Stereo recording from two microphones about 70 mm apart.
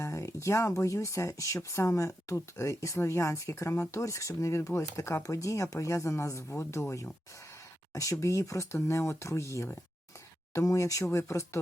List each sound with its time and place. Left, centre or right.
0.0 s speech: left
8.2 s speech: left